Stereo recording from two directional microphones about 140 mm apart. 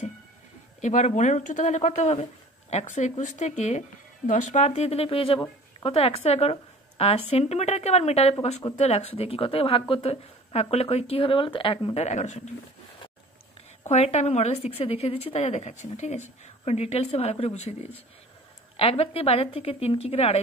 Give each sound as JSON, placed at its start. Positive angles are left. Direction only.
{"t": 0.7, "sound": "speech", "side_deg": 55}
{"t": 13.8, "sound": "speech", "side_deg": 50}
{"t": 18.8, "sound": "speech", "side_deg": 45}